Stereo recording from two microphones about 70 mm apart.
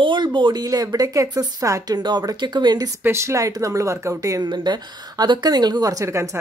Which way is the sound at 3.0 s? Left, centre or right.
Right.